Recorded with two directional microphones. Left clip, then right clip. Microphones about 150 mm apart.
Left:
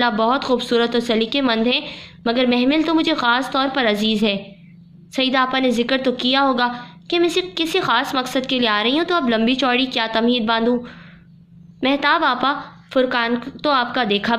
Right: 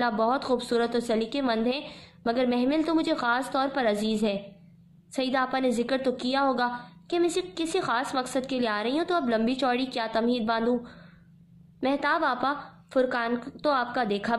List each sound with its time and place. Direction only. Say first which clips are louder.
0.0 s a woman's voice: left 8 dB; 20° left (ahead or behind)